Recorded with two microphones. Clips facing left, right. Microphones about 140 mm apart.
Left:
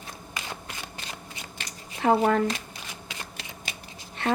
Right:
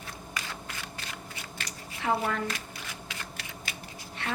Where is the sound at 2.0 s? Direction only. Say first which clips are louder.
Left 7 dB; 45° left (ahead or behind).